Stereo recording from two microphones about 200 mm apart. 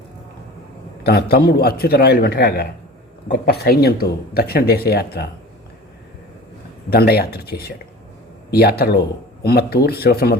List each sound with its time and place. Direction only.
1.0 s speech: 50° left (ahead or behind)
6.9 s speech: 50° left (ahead or behind)